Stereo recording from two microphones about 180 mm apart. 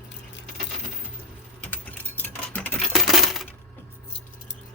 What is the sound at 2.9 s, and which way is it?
Coin, centre (ahead or behind).